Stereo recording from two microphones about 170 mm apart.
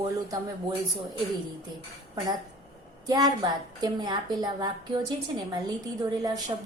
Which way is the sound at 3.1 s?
25° right (ahead or behind).